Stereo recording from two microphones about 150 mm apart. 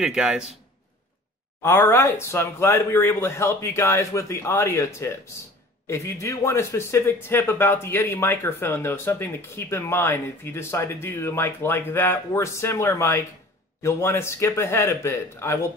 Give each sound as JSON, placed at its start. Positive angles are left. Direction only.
{"t": 0.0, "sound": "a man's voice", "side_deg": -5}
{"t": 1.6, "sound": "speech", "side_deg": 15}